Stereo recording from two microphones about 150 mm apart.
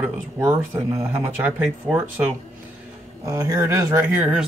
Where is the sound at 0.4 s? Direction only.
20° right (ahead or behind).